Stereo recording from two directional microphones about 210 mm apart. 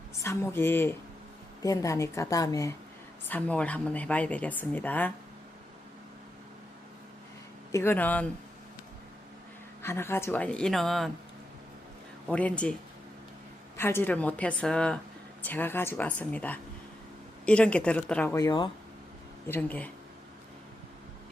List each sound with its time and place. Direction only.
0.1 s a woman's voice: 15° left (ahead or behind)
7.7 s a woman's voice: 10° left (ahead or behind)
9.8 s a woman's voice: 10° left (ahead or behind)
12.3 s speech: 5° left (ahead or behind)
13.7 s a woman's voice: 10° left (ahead or behind)